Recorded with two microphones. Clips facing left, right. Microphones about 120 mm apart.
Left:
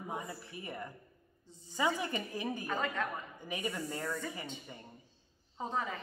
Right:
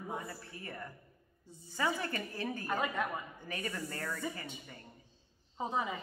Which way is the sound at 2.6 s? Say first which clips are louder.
Right 3 dB; 10° right (ahead or behind).